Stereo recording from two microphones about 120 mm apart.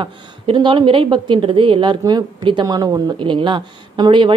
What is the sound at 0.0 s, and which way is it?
Speech, 40° right (ahead or behind).